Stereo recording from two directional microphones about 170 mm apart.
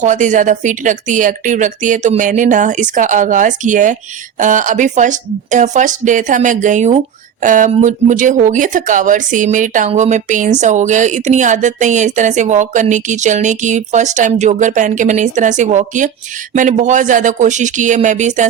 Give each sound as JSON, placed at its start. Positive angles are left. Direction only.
{"t": 0.0, "sound": "speech", "side_deg": -45}